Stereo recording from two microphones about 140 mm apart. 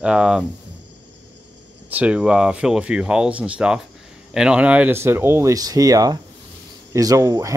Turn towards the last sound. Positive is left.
turn(degrees=-25)  # may be behind; listen again after turning